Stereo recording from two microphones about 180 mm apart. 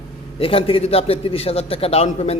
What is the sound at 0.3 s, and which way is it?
A man's voice, 30° left (ahead or behind).